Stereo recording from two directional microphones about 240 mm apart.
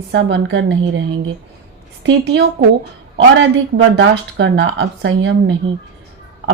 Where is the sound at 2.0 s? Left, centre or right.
Right.